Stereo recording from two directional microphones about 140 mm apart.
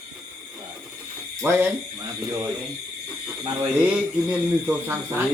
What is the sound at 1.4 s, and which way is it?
Speech, 15° right (ahead or behind).